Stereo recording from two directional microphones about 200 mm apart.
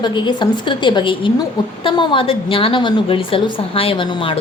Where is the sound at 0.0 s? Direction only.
20° left (ahead or behind).